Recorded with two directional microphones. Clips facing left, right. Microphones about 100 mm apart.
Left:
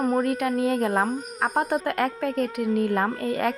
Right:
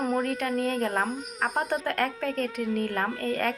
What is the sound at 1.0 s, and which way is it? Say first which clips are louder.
Speech: left 4 dB; 45° left (ahead or behind).